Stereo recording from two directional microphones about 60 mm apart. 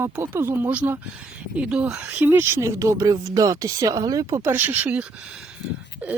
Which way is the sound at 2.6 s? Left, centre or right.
Right.